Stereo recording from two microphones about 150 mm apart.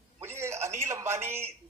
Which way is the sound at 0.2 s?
15° right (ahead or behind).